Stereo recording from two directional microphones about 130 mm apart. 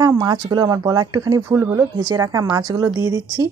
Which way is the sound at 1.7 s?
30° right (ahead or behind).